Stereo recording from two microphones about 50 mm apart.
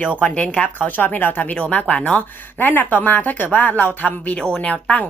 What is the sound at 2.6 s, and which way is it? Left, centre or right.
Speech, left.